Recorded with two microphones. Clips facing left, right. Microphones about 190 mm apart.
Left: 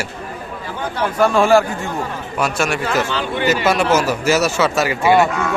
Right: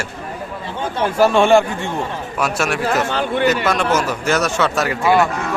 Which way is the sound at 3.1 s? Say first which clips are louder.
Right 2 dB; 55° right (ahead or behind).